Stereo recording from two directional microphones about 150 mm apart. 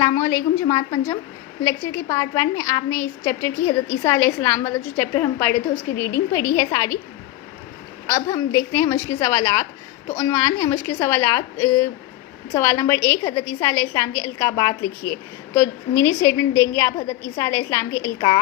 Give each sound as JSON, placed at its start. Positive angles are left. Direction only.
{"t": 0.0, "sound": "a woman's voice", "side_deg": 20}
{"t": 8.0, "sound": "a woman's voice", "side_deg": 20}